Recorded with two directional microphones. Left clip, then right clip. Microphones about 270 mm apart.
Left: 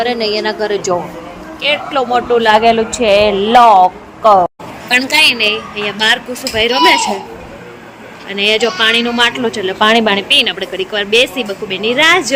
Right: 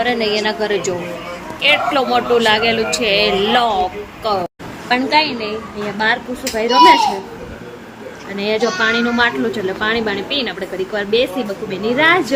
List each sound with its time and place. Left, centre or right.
0.0 s a woman's voice: left
4.9 s a woman's voice: left
6.6 s a woman's voice: left
8.4 s a woman's voice: left